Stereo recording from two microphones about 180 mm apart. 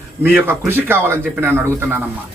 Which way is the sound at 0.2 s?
10° right (ahead or behind).